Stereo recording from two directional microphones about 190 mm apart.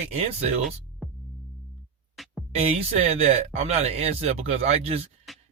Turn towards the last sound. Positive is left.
turn(degrees=0)  # may be behind; listen again after turning